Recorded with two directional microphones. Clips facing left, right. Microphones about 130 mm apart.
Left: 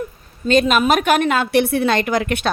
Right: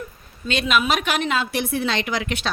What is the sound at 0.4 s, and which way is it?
A woman's voice, 45° left (ahead or behind).